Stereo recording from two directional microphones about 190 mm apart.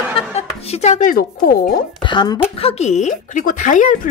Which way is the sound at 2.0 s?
25° left (ahead or behind).